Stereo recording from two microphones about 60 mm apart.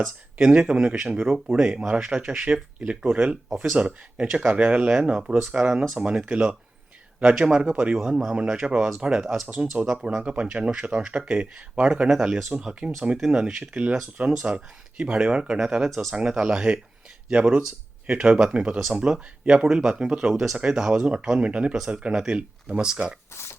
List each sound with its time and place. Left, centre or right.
0.4 s speech: centre
2.0 s speech: centre
2.4 s speech: centre
16.4 s speech: centre
18.8 s speech: centre
20.3 s speech: centre
23.3 s speech: left